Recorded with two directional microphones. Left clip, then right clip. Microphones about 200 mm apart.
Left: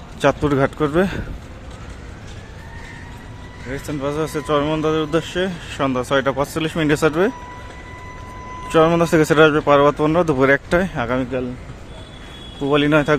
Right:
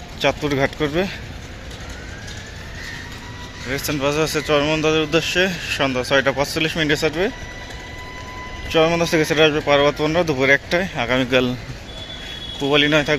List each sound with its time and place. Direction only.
0.2 s speech: 25° left (ahead or behind)
3.7 s speech: 5° left (ahead or behind); by 7.3 s 25° left (ahead or behind)
8.7 s speech: 25° left (ahead or behind)
11.2 s a man's voice: 5° right (ahead or behind)
12.6 s speech: 20° left (ahead or behind)